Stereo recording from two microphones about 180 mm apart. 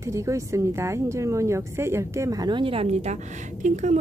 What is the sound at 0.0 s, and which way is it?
A woman's voice, 15° right (ahead or behind).